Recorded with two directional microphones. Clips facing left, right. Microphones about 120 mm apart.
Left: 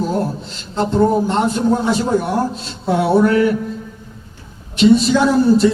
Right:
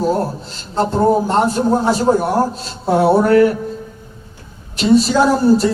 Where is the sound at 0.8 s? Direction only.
40° right (ahead or behind).